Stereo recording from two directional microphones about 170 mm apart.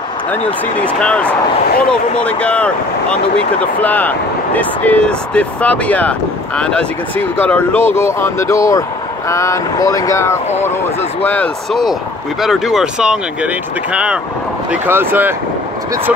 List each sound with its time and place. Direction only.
1.0 s speech: 5° left (ahead or behind); by 15.3 s 10° right (ahead or behind)